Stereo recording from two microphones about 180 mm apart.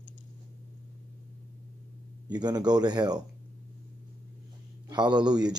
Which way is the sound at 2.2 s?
25° right (ahead or behind).